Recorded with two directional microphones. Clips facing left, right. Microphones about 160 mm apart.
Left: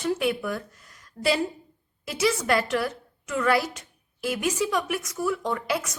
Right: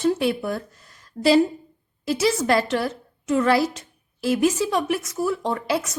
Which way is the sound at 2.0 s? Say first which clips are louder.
Right 4 dB; 30° right (ahead or behind).